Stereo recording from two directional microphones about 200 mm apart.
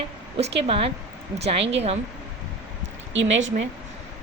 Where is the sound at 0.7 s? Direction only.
30° right (ahead or behind).